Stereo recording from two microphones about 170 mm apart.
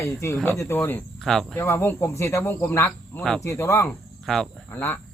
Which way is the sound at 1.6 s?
15° left (ahead or behind).